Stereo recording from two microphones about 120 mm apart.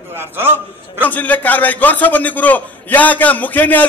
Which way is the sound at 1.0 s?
15° left (ahead or behind).